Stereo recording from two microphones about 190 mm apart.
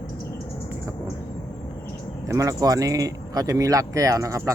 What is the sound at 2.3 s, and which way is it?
Speech, 15° right (ahead or behind).